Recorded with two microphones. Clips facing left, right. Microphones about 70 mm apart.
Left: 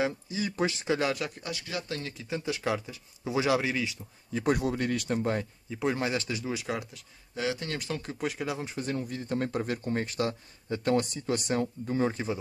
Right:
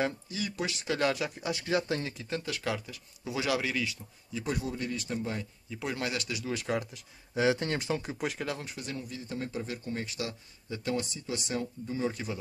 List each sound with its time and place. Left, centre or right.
0.3 s speech: left
0.9 s speech: centre
1.5 s speech: right
2.4 s speech: left
4.3 s speech: left
5.7 s speech: left
6.5 s speech: centre
7.3 s speech: right
7.9 s speech: centre
8.2 s speech: centre
8.6 s speech: left